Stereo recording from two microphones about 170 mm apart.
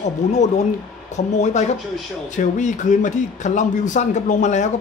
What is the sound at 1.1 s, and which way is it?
Speech, 40° left (ahead or behind).